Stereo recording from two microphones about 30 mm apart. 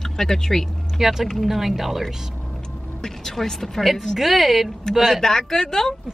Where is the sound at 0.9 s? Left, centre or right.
Centre.